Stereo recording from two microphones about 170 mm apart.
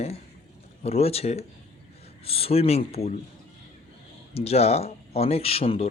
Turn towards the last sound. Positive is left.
turn(degrees=35)  # may be behind; listen again after turning